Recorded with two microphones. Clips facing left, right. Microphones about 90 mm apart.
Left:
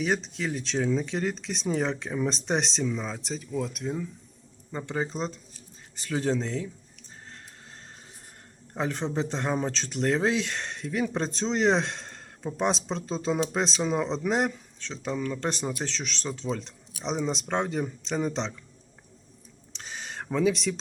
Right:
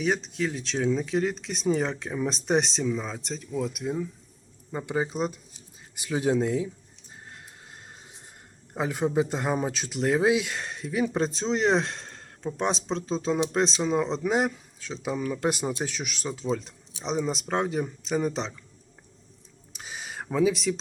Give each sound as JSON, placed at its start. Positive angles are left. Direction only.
{"t": 0.0, "sound": "speech", "side_deg": 0}
{"t": 8.7, "sound": "speech", "side_deg": -10}
{"t": 19.7, "sound": "a sound", "side_deg": -5}